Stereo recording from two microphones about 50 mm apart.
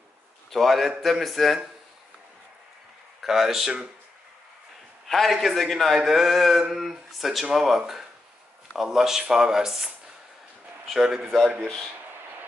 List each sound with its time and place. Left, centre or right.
0.5 s a man's voice: centre
3.2 s speech: centre
5.0 s a man's voice: centre
11.0 s speech: centre